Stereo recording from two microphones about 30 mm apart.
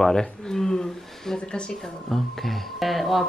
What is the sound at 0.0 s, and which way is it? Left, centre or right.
Speech, centre.